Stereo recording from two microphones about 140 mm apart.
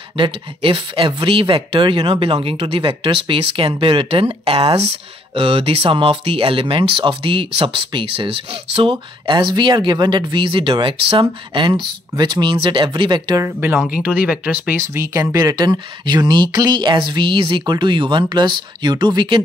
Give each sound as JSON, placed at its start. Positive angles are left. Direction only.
{"t": 0.2, "sound": "speech", "side_deg": -35}
{"t": 13.9, "sound": "speech", "side_deg": -5}